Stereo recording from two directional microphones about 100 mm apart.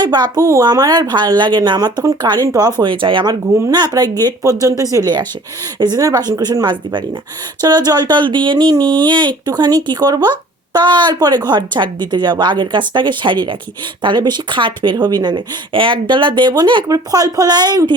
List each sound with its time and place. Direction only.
0.0 s speech: 45° right (ahead or behind)
16.9 s speech: 35° right (ahead or behind)